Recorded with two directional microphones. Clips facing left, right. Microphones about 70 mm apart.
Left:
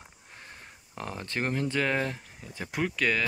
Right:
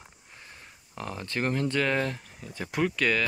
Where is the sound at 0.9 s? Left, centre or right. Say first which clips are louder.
Right 1 dB; left.